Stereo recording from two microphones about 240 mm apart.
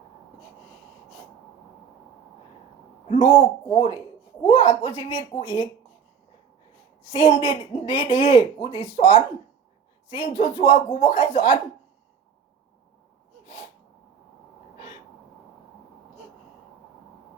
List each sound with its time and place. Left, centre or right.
3.1 s a woman's voice: left
7.1 s a woman's voice: left
10.2 s a woman's voice: left